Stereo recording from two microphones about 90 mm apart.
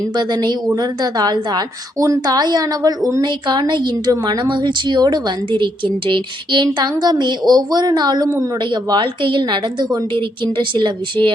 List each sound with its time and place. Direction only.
0.2 s a woman's voice: 55° right (ahead or behind)
3.9 s a woman's voice: 45° right (ahead or behind); by 11.3 s 60° right (ahead or behind)